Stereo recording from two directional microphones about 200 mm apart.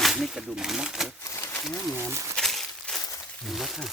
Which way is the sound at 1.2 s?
15° left (ahead or behind).